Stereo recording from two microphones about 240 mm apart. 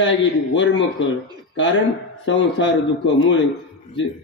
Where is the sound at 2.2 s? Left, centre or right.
Left.